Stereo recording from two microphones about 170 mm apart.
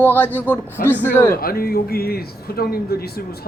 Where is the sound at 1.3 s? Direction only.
60° left (ahead or behind).